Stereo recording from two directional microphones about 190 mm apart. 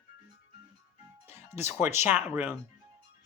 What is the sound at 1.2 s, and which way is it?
Speech, 15° right (ahead or behind).